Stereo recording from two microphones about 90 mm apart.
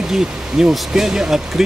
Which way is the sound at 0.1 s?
5° right (ahead or behind).